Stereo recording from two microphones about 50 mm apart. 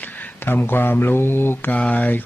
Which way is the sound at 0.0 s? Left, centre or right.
Left.